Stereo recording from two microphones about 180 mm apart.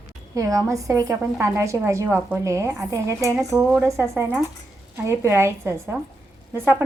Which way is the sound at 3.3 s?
Centre (ahead or behind).